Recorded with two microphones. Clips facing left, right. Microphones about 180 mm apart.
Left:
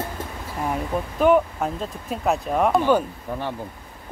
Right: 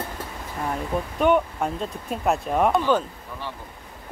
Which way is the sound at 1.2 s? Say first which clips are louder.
Left 3 dB; centre (ahead or behind).